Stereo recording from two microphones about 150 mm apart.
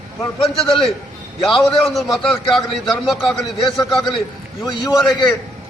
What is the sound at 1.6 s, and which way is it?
Speech, centre (ahead or behind).